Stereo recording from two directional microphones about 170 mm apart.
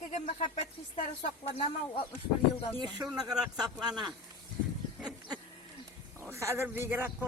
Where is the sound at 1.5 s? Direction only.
35° left (ahead or behind).